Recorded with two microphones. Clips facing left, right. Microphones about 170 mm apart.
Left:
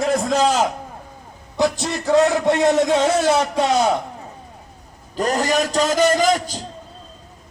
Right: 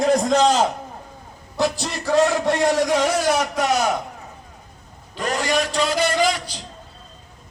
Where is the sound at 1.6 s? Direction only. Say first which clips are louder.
Left 3 dB; 20° left (ahead or behind).